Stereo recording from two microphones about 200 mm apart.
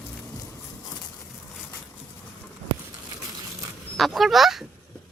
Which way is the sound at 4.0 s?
Centre (ahead or behind).